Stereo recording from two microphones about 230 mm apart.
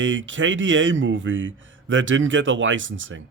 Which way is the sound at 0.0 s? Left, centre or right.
Right.